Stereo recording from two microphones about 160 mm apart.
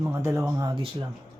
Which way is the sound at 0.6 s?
30° right (ahead or behind).